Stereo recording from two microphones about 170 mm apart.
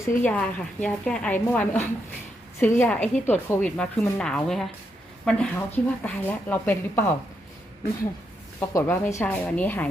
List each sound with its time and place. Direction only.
0.3 s speech: 10° left (ahead or behind)
8.7 s speech: 15° left (ahead or behind)